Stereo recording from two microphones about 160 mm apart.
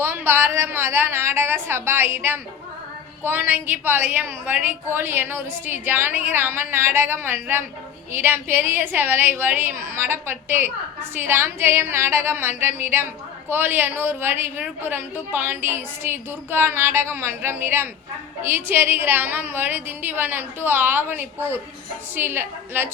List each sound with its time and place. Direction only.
0.0 s a woman's voice: 15° right (ahead or behind)